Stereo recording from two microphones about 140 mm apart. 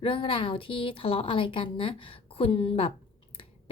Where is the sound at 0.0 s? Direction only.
40° left (ahead or behind).